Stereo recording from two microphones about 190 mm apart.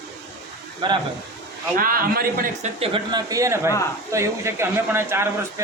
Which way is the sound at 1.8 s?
50° right (ahead or behind).